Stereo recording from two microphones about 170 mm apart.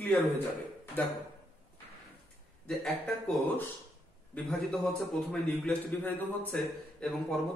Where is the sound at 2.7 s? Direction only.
5° left (ahead or behind).